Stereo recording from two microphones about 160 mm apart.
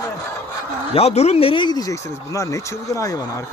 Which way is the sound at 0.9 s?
40° left (ahead or behind).